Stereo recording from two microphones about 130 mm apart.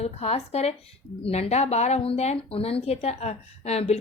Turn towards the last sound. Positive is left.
turn(degrees=55)  # may be behind; listen again after turning